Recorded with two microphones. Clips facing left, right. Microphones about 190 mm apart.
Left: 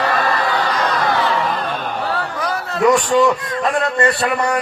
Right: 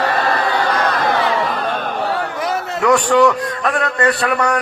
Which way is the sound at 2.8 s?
65° right (ahead or behind).